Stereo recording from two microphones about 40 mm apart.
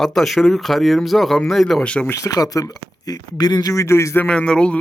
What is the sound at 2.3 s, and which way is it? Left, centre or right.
Speech, left.